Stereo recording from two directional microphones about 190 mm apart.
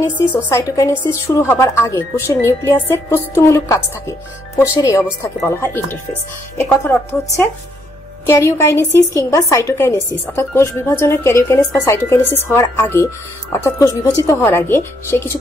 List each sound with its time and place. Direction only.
0.0 s a woman's voice: 10° left (ahead or behind)